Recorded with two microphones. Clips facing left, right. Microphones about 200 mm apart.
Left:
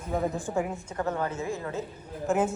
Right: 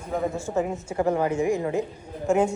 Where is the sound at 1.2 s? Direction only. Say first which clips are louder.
Right 8 dB; 15° right (ahead or behind).